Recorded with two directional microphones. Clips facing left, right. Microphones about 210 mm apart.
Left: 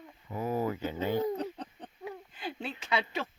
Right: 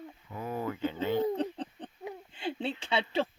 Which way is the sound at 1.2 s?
30° right (ahead or behind).